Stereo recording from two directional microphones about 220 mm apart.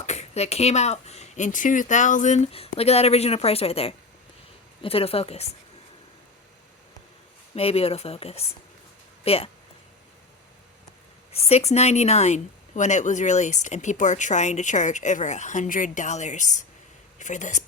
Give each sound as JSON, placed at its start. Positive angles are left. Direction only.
{"t": 0.0, "sound": "speech", "side_deg": 30}
{"t": 7.5, "sound": "speech", "side_deg": 25}
{"t": 11.3, "sound": "speech", "side_deg": 30}